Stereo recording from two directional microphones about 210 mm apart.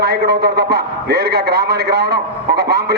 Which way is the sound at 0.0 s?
50° right (ahead or behind).